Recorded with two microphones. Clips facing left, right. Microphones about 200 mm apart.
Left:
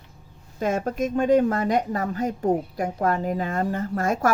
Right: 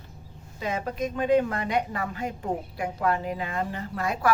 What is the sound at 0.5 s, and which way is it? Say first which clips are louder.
Speech: left 5 dB; 45° left (ahead or behind).